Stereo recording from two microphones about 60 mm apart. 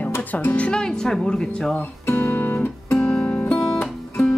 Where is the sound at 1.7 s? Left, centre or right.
Left.